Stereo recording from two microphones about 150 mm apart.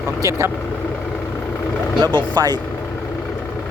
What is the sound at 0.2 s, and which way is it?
Speech, 20° right (ahead or behind).